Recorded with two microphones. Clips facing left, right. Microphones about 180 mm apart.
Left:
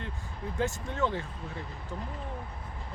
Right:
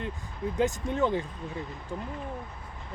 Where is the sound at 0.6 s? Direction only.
15° right (ahead or behind).